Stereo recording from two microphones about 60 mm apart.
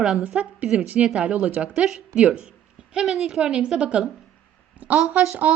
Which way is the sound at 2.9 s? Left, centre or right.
Centre.